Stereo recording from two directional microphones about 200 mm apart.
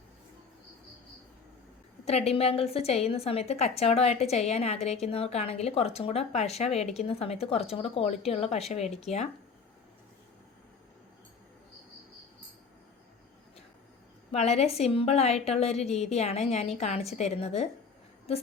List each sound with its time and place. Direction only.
2.0 s a woman's voice: 30° left (ahead or behind)
14.3 s a woman's voice: 30° left (ahead or behind)